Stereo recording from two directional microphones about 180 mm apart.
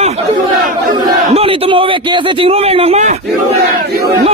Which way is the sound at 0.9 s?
25° right (ahead or behind).